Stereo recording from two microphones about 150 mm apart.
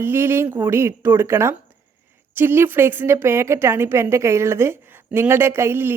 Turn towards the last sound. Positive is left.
turn(degrees=-15)  # may be behind; listen again after turning